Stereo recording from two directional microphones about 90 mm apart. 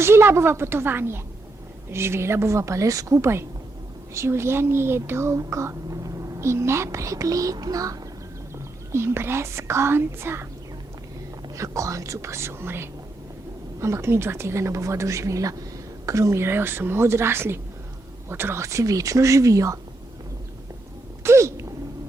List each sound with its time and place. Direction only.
0.0 s speech: 30° right (ahead or behind)
8.5 s speech: 30° right (ahead or behind)
11.5 s speech: 35° right (ahead or behind)
21.2 s a sound: 30° right (ahead or behind)